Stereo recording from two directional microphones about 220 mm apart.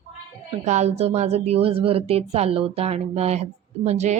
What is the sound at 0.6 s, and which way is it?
A woman's voice, 30° right (ahead or behind).